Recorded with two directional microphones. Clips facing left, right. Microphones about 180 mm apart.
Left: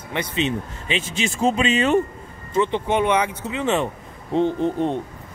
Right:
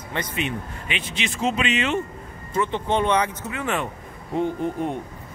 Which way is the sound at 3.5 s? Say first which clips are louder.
Left 5 dB; 20° left (ahead or behind).